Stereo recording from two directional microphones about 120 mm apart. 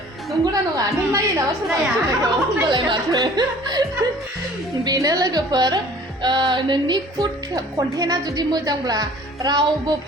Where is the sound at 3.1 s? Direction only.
35° right (ahead or behind).